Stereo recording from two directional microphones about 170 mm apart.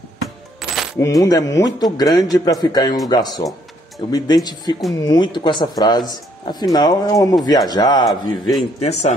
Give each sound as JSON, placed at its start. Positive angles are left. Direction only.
{"t": 0.9, "sound": "speech", "side_deg": 20}
{"t": 8.8, "sound": "speech", "side_deg": 40}